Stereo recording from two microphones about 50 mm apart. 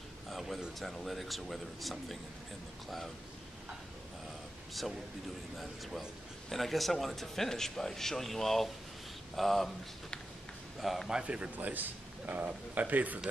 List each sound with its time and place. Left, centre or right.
0.3 s a sound: centre
0.7 s speech: centre
5.6 s speech: centre
10.8 s speech: centre
11.2 s speech: right